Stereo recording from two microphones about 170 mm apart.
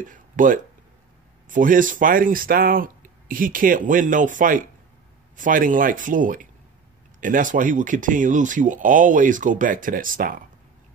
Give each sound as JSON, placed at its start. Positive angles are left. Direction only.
{"t": 0.0, "sound": "speech", "side_deg": -50}